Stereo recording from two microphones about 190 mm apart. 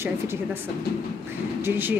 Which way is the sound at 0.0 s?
10° right (ahead or behind).